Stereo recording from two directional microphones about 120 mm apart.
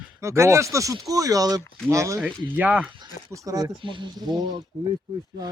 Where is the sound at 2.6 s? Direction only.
10° right (ahead or behind).